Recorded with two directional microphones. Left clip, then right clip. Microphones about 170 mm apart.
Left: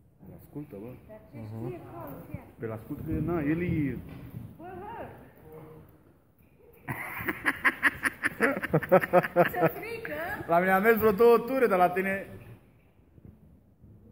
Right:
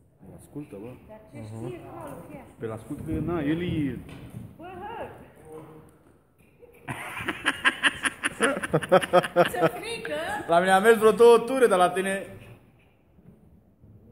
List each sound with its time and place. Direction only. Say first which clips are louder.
0.7 s speech: right 2 dB; centre (ahead or behind)
6.9 s a sound: right 2 dB; 10° left (ahead or behind)
7.8 s snicker: right 2 dB; 5° left (ahead or behind)
10.0 s speech: right 4 dB; centre (ahead or behind)